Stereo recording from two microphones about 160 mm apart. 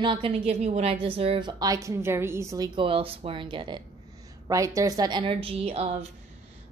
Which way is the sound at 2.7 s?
35° right (ahead or behind).